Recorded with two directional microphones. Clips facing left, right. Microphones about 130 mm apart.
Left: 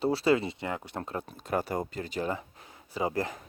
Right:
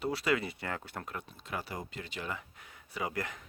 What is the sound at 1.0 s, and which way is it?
Speech, 30° left (ahead or behind).